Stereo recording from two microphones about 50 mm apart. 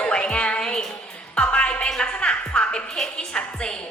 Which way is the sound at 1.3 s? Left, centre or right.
Left.